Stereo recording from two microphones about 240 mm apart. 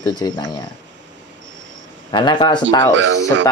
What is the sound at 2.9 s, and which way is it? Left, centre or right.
Speech, right.